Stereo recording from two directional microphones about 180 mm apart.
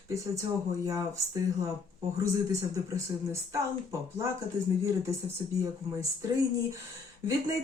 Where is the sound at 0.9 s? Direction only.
20° right (ahead or behind).